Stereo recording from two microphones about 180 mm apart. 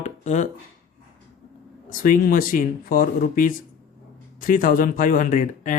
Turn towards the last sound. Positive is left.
turn(degrees=45)  # may be behind; listen again after turning